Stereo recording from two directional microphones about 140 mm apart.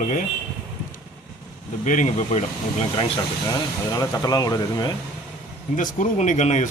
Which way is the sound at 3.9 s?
25° left (ahead or behind).